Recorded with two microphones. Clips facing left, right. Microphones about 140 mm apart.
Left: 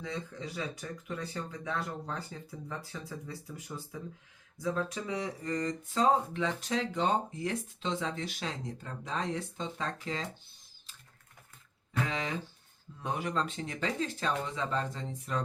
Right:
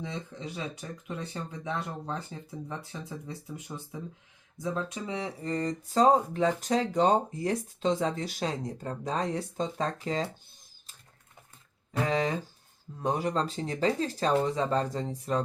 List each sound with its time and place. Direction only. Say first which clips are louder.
0.0 s speech: right 1 dB; 20° right (ahead or behind); by 10.2 s 40° right (ahead or behind)
12.0 s speech: right 7 dB; 40° right (ahead or behind)